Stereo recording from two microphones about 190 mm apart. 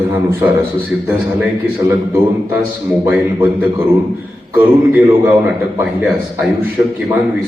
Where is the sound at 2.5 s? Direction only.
5° right (ahead or behind).